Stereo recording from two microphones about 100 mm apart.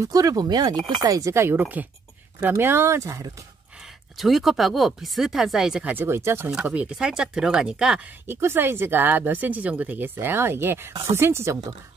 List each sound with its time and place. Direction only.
0.0 s speech: 35° right (ahead or behind)
3.8 s a woman's voice: centre (ahead or behind); by 6.5 s 25° right (ahead or behind)
6.5 s speech: 10° right (ahead or behind)
8.3 s speech: 20° right (ahead or behind)